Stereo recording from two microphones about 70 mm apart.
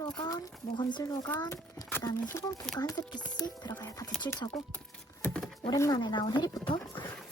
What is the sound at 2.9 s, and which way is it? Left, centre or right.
Speech, left.